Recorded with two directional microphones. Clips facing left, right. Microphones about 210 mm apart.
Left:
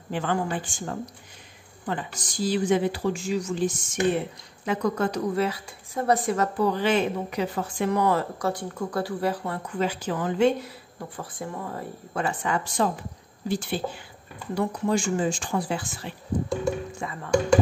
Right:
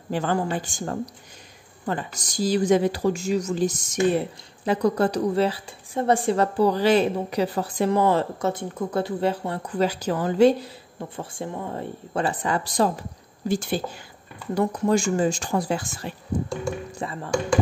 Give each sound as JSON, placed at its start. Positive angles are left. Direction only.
{"t": 0.1, "sound": "a woman's voice", "side_deg": -40}
{"t": 11.1, "sound": "a woman's voice", "side_deg": -25}
{"t": 17.0, "sound": "a woman's voice", "side_deg": -30}